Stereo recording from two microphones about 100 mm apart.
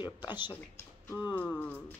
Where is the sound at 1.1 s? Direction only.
45° left (ahead or behind).